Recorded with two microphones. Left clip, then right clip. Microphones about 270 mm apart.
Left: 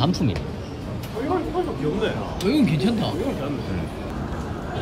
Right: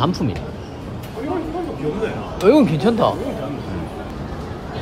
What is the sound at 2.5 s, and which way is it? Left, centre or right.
Speech, centre.